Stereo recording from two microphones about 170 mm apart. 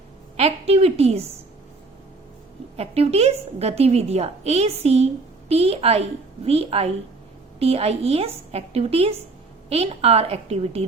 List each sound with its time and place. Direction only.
0.3 s a woman's voice: 35° right (ahead or behind)
2.7 s a woman's voice: 35° right (ahead or behind)